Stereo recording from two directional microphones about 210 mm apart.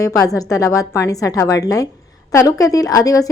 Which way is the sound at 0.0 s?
15° left (ahead or behind).